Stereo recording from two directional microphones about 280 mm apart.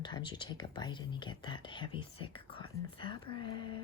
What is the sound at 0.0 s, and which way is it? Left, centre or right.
Speech, centre.